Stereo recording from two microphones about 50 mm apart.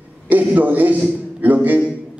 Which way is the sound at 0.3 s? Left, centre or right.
Right.